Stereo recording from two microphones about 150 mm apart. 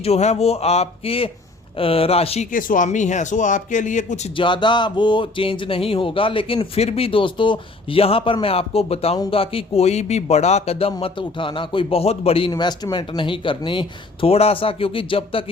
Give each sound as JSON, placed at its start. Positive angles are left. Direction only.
{"t": 0.0, "sound": "speech", "side_deg": 45}
{"t": 2.5, "sound": "speech", "side_deg": 65}
{"t": 4.4, "sound": "speech", "side_deg": 30}
{"t": 12.5, "sound": "speech", "side_deg": 30}